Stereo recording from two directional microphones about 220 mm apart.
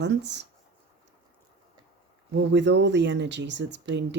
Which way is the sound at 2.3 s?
55° right (ahead or behind).